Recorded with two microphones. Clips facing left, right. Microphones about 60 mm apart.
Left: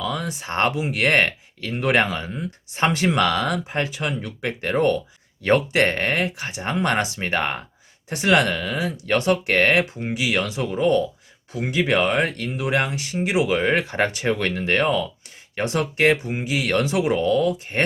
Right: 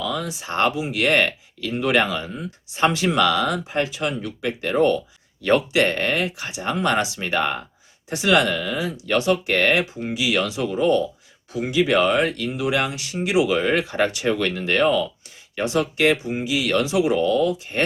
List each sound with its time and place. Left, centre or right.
0.0 s speech: left